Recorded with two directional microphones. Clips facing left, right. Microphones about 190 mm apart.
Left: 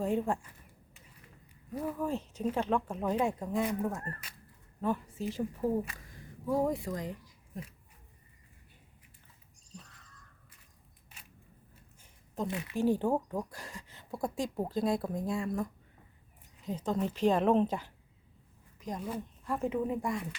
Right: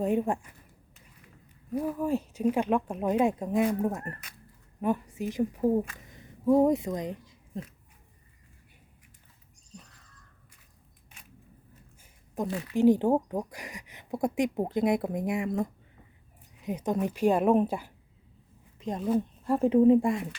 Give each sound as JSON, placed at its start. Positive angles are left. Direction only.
{"t": 0.0, "sound": "speech", "side_deg": -20}
{"t": 1.7, "sound": "speech", "side_deg": -10}
{"t": 6.0, "sound": "a sound", "side_deg": -20}
{"t": 12.3, "sound": "speech", "side_deg": -15}
{"t": 18.8, "sound": "speech", "side_deg": -25}